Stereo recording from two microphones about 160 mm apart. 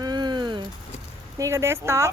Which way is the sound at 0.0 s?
25° right (ahead or behind).